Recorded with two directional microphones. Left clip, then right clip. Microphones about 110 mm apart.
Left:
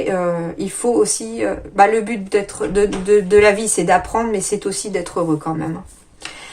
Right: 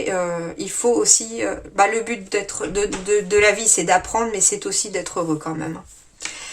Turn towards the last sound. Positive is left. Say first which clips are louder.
# left 4 dB
turn(degrees=-20)  # may be behind; listen again after turning